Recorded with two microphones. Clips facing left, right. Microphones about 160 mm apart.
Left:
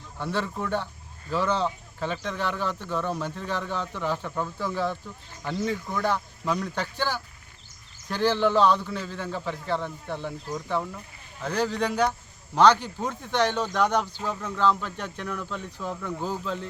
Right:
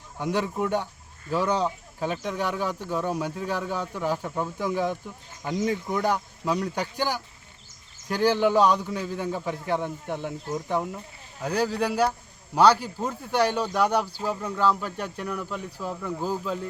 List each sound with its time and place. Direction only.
0.2 s speech: 15° right (ahead or behind)